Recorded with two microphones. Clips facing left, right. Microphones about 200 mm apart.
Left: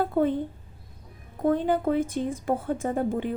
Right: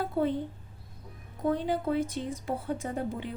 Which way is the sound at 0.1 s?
50° left (ahead or behind).